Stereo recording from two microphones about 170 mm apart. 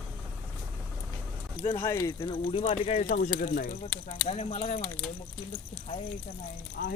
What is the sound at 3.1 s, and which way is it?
Speech, 55° left (ahead or behind).